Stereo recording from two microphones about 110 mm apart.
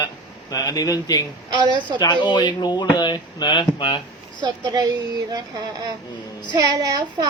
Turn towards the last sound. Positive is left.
turn(degrees=-35)  # may be behind; listen again after turning